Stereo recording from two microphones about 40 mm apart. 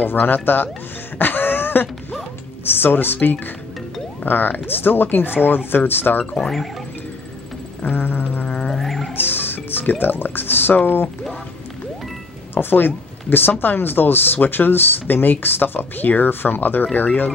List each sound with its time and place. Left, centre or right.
0.0 s speech: left
1.1 s throat clearing: left
2.6 s speech: left
6.3 s speech: centre
7.8 s music: left
8.5 s music: left
8.7 s music: centre
9.1 s speech: left
12.5 s speech: left